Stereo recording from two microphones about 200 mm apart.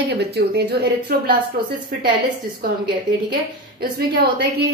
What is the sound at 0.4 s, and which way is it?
Speech, 55° right (ahead or behind).